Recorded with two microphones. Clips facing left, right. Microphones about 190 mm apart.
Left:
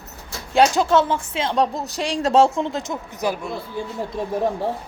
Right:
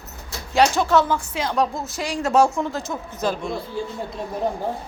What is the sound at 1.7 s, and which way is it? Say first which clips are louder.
Speech: left 2 dB; 35° left (ahead or behind).